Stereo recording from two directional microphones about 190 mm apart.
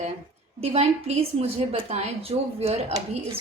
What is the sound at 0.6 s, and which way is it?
A woman's voice, 35° right (ahead or behind).